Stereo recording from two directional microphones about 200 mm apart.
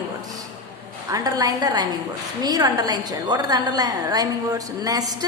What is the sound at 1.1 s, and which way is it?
A woman's voice, 20° right (ahead or behind).